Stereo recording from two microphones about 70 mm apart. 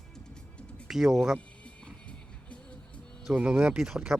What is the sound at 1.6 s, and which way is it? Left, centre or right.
Music, centre.